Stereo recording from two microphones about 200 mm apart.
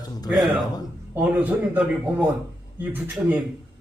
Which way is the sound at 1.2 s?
10° right (ahead or behind).